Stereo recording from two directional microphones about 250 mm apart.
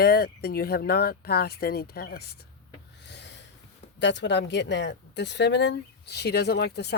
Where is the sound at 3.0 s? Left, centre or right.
Left.